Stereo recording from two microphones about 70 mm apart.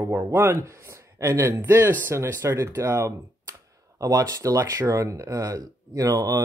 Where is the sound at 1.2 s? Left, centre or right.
Right.